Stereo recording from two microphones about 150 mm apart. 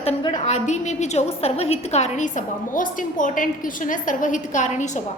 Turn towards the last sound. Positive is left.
turn(degrees=55)  # may be behind; listen again after turning